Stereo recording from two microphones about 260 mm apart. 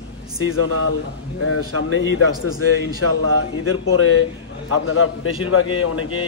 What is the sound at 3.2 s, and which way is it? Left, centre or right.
A man's voice, left.